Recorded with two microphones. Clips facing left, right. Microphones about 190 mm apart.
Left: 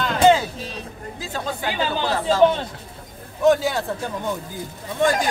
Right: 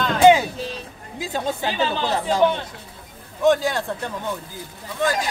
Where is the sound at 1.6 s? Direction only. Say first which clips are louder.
Left 2 dB; 20° right (ahead or behind).